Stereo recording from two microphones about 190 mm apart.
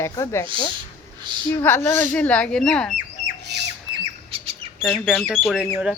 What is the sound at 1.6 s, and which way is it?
Speech, 10° left (ahead or behind).